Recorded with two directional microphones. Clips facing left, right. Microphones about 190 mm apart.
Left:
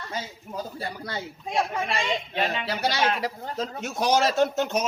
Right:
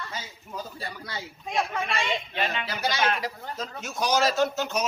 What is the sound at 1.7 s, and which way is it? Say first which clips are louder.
A woman's voice: left 1 dB; 30° left (ahead or behind).